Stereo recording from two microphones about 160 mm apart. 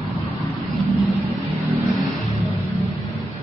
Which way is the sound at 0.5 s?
Centre (ahead or behind).